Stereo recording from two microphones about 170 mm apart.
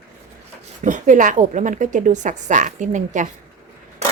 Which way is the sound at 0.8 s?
45° right (ahead or behind).